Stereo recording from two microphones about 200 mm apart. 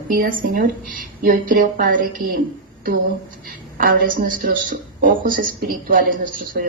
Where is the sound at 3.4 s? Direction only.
45° right (ahead or behind).